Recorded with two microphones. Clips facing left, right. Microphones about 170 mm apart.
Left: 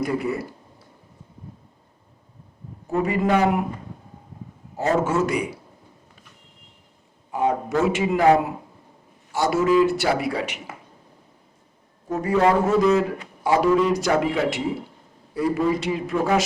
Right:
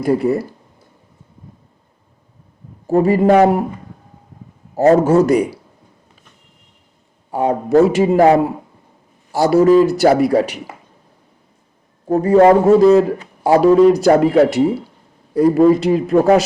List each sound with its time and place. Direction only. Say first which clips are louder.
0.0 s a man's voice: right 9 dB; 35° right (ahead or behind)
2.8 s a man's voice: right 9 dB; 35° right (ahead or behind)
4.9 s a man's voice: right 10 dB; 40° right (ahead or behind)
7.3 s a man's voice: right 6 dB; 35° right (ahead or behind)
12.0 s a man's voice: right 10 dB; 35° right (ahead or behind)